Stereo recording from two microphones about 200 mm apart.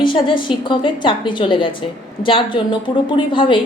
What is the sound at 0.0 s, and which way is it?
A woman's voice, 25° left (ahead or behind).